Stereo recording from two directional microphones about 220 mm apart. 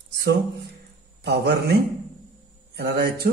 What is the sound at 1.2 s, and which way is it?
Speech, 45° right (ahead or behind).